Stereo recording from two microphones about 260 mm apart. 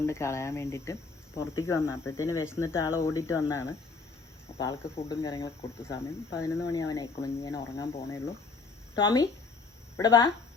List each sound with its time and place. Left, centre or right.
0.0 s speech: centre